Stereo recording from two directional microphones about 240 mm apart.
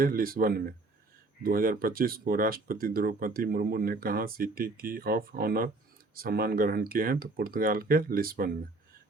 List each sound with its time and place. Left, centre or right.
0.0 s speech: right